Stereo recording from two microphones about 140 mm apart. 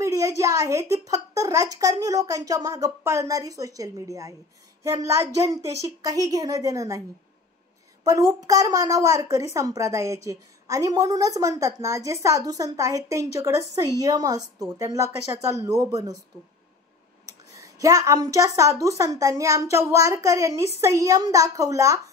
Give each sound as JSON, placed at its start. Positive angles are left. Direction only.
{"t": 0.0, "sound": "a woman's voice", "side_deg": -25}
{"t": 8.0, "sound": "a woman's voice", "side_deg": -25}
{"t": 17.6, "sound": "a woman's voice", "side_deg": -25}